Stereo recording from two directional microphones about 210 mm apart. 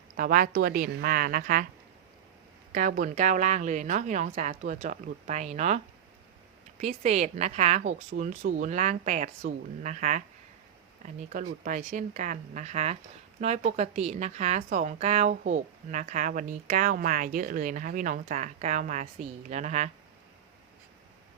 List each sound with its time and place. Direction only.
0.2 s a woman's voice: 40° right (ahead or behind)
2.7 s a woman's voice: 40° right (ahead or behind)